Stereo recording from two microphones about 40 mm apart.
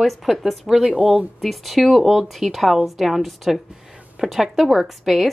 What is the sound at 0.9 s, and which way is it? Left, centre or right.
Speech, centre.